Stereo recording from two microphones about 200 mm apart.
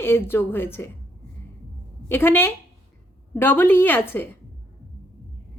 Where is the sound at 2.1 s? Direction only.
10° left (ahead or behind).